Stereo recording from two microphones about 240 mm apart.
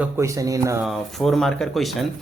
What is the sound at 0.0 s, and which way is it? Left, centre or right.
Speech, centre.